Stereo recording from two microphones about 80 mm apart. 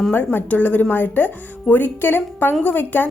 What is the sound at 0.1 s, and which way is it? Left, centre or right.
A woman's voice, left.